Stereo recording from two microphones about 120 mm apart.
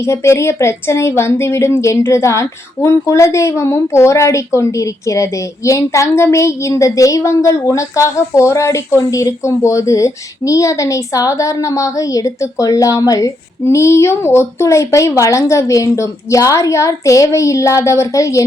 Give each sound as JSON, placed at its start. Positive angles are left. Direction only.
{"t": 0.0, "sound": "speech", "side_deg": 20}